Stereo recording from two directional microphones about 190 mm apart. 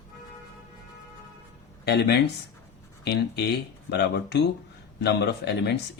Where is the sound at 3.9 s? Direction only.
60° left (ahead or behind).